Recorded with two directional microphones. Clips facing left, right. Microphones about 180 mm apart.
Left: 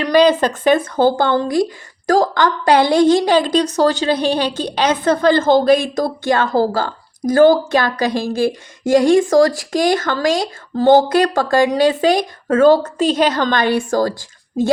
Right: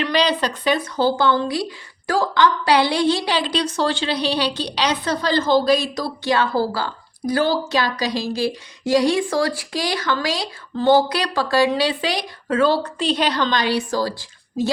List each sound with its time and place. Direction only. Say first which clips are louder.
0.0 s a woman's voice: left 7 dB; 45° left (ahead or behind)